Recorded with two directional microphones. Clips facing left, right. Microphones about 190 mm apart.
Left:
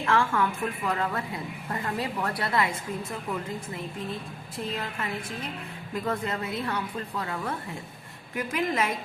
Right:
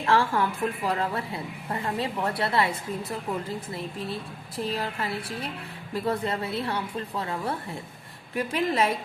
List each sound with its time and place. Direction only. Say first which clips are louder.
0.0 s a woman's voice: right 1 dB; 35° right (ahead or behind)